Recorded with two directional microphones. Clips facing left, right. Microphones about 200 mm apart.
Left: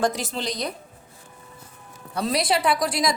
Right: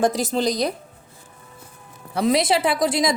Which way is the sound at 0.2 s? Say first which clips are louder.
Right 7 dB; 40° right (ahead or behind).